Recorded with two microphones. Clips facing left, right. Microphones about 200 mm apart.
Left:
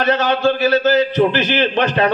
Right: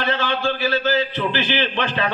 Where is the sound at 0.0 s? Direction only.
45° left (ahead or behind).